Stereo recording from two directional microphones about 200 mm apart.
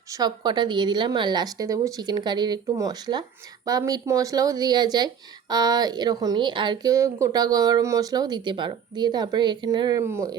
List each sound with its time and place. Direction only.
0.1 s speech: 20° right (ahead or behind)